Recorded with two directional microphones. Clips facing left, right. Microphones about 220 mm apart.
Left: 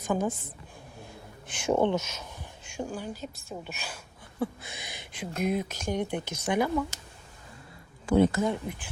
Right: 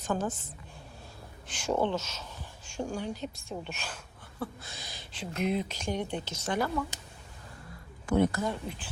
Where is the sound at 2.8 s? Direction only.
5° left (ahead or behind).